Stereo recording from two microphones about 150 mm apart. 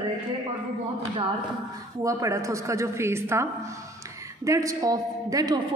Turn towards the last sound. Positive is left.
turn(degrees=-25)  # may be behind; listen again after turning